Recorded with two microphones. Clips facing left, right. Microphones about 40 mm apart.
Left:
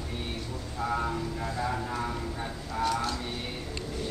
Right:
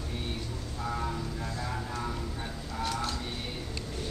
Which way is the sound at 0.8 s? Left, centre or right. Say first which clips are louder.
Left 4 dB; centre.